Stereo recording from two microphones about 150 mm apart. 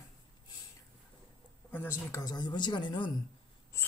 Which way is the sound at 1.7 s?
15° left (ahead or behind).